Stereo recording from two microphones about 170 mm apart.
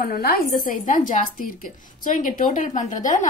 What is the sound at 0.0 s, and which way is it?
A woman's voice, 60° left (ahead or behind).